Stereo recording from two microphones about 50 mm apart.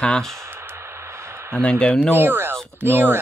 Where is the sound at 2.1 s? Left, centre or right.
Right.